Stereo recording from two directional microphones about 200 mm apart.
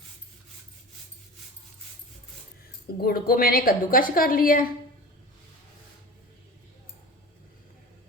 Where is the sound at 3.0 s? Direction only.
50° left (ahead or behind).